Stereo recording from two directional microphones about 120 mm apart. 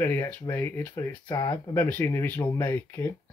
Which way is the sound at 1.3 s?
30° left (ahead or behind).